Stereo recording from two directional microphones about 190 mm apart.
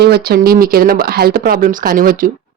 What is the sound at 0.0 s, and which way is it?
A woman's voice, 55° right (ahead or behind).